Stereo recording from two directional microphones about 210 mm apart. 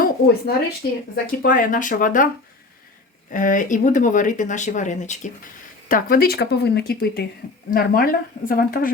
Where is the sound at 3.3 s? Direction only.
40° left (ahead or behind).